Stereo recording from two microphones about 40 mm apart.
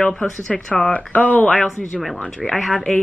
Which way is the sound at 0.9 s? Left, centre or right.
Left.